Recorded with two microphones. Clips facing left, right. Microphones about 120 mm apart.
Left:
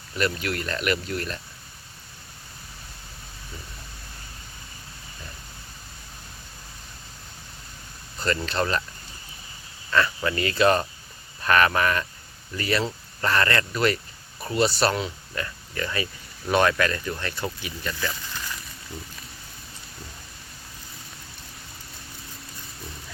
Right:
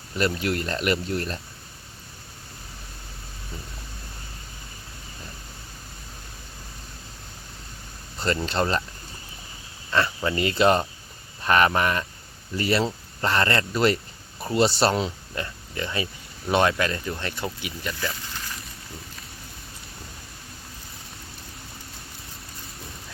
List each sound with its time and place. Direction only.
0.2 s speech: 25° right (ahead or behind)
8.2 s speech: 30° right (ahead or behind)
10.2 s speech: 20° right (ahead or behind)
18.1 s a sound: centre (ahead or behind)